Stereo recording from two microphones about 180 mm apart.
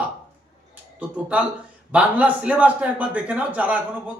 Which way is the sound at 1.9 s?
10° right (ahead or behind).